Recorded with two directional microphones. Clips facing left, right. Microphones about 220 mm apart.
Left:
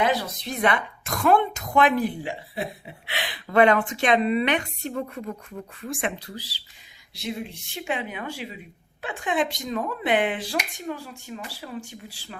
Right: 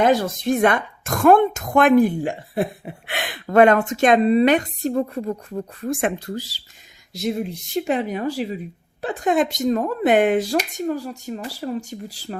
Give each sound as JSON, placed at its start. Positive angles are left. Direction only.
{"t": 0.0, "sound": "speech", "side_deg": -45}